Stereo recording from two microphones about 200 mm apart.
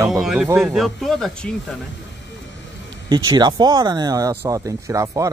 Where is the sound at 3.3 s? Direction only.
20° right (ahead or behind).